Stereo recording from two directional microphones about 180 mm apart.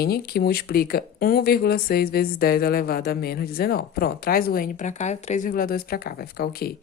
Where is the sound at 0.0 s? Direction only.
60° left (ahead or behind).